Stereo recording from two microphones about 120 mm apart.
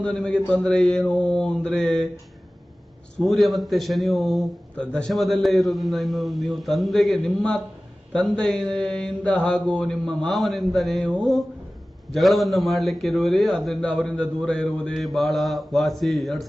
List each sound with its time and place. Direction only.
0.0 s mantra: 10° left (ahead or behind)
3.2 s a man's voice: centre (ahead or behind)
8.1 s mantra: 10° left (ahead or behind)
12.1 s a man's voice: centre (ahead or behind)